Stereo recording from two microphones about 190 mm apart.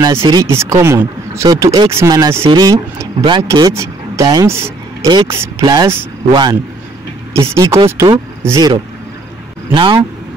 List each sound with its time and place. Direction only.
0.0 s speech: 15° right (ahead or behind)
9.8 s speech: 25° right (ahead or behind)